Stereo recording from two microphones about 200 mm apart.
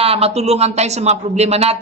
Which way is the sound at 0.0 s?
30° right (ahead or behind).